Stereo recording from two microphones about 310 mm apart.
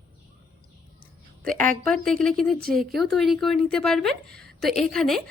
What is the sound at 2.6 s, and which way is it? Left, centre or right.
Speech, right.